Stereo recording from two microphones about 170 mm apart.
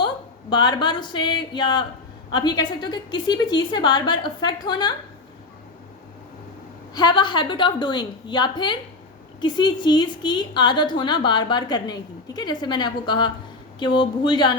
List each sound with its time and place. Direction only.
0.5 s a woman's voice: 25° left (ahead or behind)
6.9 s a woman's voice: 25° left (ahead or behind)